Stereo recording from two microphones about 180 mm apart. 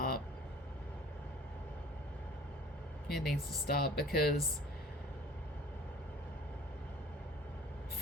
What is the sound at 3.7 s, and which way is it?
Speech, 60° left (ahead or behind).